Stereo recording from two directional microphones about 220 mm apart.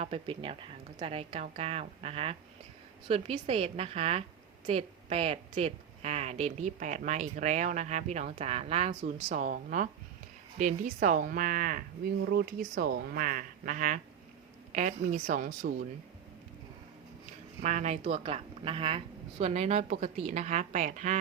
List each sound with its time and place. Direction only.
0.0 s a woman's voice: 25° right (ahead or behind)
17.6 s speech: 35° right (ahead or behind)